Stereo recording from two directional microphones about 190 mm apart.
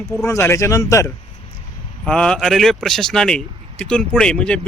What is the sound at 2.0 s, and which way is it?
Speech, 5° left (ahead or behind).